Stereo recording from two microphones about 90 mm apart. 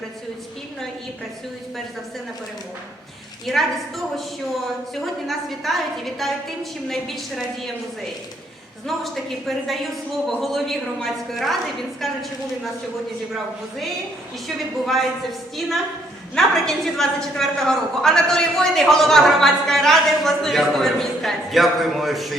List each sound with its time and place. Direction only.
3.4 s a woman's voice: centre (ahead or behind)
8.9 s a woman's voice: centre (ahead or behind)
14.4 s a woman's voice: centre (ahead or behind)
16.3 s a woman's voice: 5° left (ahead or behind)